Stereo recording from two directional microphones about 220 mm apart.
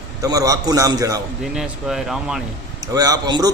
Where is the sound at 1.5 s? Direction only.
5° right (ahead or behind).